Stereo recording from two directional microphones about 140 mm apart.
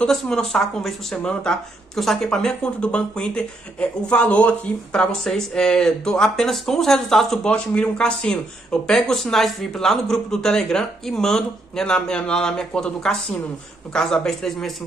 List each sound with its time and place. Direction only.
0.0 s speech: 5° left (ahead or behind)